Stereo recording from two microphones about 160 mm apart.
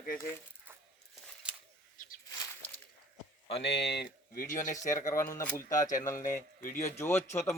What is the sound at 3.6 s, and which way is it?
Speech, 90° left.